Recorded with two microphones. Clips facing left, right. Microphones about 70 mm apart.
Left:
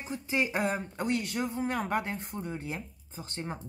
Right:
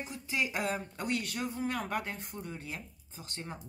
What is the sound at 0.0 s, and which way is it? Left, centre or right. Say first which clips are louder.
Speech: left 4 dB; left.